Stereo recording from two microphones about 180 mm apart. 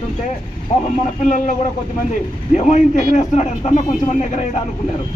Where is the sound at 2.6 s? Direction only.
45° left (ahead or behind).